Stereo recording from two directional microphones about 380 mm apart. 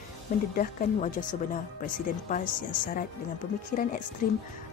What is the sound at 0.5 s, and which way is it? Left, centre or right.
Speech, left.